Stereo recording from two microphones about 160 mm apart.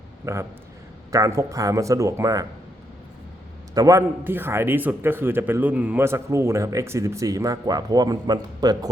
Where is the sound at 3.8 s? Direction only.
20° right (ahead or behind).